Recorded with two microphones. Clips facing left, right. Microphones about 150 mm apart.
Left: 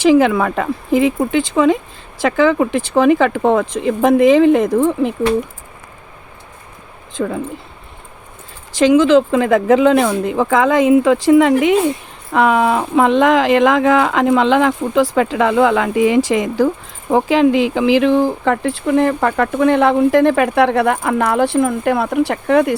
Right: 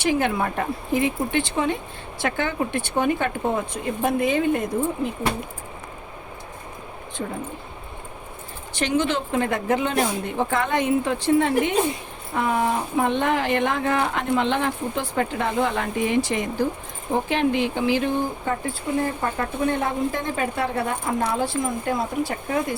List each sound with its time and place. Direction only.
0.0 s speech: 90° left
8.7 s speech: 90° left